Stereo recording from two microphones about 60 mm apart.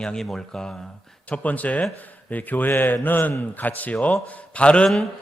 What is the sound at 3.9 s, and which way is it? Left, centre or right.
Speech, centre.